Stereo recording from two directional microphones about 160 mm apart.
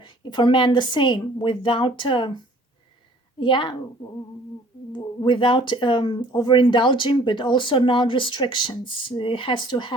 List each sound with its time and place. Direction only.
0.0 s a woman's voice: 30° left (ahead or behind)
3.4 s a woman's voice: 30° left (ahead or behind)
4.9 s speech: 30° left (ahead or behind)